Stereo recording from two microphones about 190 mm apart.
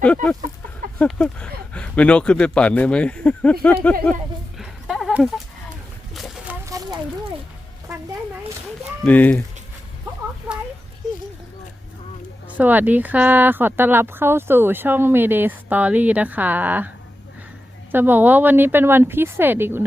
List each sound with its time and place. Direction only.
0.0 s speech: 5° left (ahead or behind)
4.5 s a sound: centre (ahead or behind); by 7.0 s 15° right (ahead or behind)
9.0 s speech: 10° left (ahead or behind)
12.5 s speech: 10° right (ahead or behind)
17.9 s speech: 10° right (ahead or behind)